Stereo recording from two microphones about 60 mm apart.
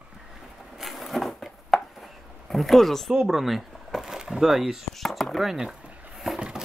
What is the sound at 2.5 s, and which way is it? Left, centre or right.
Speech, centre.